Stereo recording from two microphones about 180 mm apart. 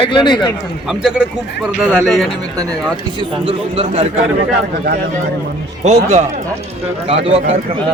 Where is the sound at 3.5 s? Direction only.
35° right (ahead or behind).